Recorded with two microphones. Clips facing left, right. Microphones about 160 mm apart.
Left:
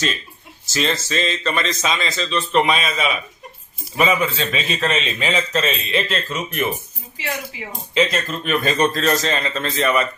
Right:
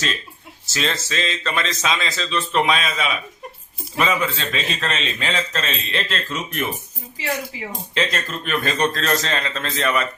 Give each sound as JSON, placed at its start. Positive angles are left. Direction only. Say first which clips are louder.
{"t": 0.6, "sound": "a man's voice", "louder": "left 3 dB", "side_deg": 0}
{"t": 7.5, "sound": "speech", "louder": "right 1 dB", "side_deg": -35}
{"t": 7.9, "sound": "a man's voice", "louder": "left 5 dB", "side_deg": 5}